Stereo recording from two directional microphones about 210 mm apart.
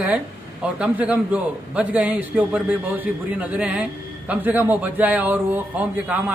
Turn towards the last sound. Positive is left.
turn(degrees=-10)  # may be behind; listen again after turning